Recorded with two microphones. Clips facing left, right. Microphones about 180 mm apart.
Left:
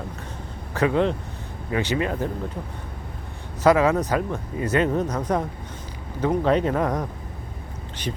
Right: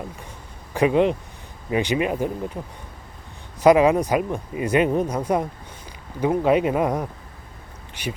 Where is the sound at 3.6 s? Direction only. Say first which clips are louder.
Right 3 dB; 15° right (ahead or behind).